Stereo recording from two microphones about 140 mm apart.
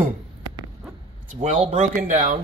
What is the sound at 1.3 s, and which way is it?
Throat clearing, 60° right (ahead or behind).